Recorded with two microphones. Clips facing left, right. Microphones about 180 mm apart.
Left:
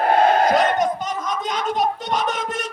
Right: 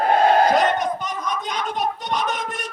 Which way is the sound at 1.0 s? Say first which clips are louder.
Left 2 dB; 45° left (ahead or behind).